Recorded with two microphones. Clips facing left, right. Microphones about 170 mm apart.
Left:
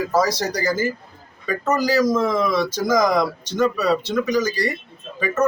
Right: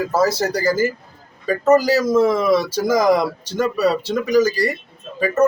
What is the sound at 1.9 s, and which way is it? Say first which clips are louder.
Speech: right 3 dB; 5° right (ahead or behind).